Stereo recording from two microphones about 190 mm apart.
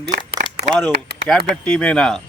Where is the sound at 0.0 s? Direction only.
60° right (ahead or behind).